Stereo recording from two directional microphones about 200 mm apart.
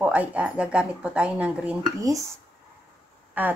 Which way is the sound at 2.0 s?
15° right (ahead or behind).